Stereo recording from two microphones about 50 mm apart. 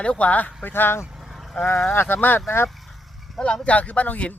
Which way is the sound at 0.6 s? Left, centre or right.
Left.